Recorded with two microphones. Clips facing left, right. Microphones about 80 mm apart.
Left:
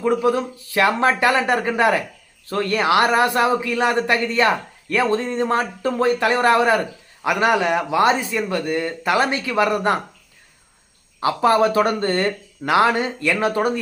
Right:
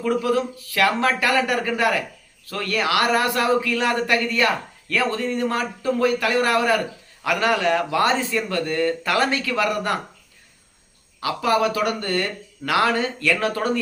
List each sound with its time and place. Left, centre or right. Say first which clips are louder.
0.0 s a man's voice: left 2 dB; left
11.2 s a man's voice: left 4 dB; left